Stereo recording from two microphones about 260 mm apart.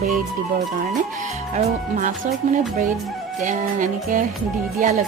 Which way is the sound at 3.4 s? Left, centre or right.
Right.